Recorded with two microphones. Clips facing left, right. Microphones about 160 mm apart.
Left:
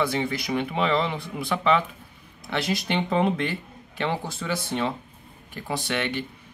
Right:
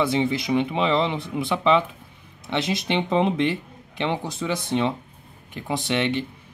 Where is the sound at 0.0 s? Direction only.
20° right (ahead or behind).